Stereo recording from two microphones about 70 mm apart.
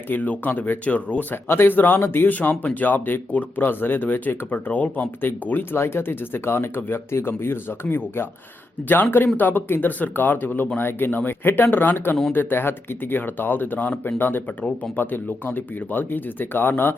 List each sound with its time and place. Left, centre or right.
0.1 s speech: left
1.5 s speech: left